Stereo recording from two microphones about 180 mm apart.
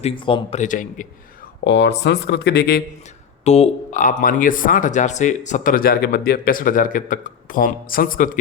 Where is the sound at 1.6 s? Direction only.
75° left (ahead or behind); by 2.8 s 60° left (ahead or behind).